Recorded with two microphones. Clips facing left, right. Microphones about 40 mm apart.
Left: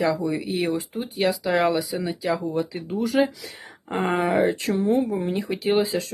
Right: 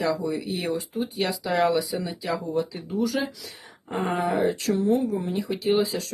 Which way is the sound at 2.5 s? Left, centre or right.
Left.